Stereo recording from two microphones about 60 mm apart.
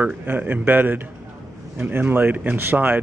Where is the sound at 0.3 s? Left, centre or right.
Right.